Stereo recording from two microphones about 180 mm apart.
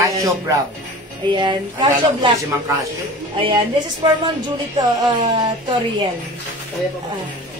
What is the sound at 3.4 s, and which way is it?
A woman's voice, 25° right (ahead or behind).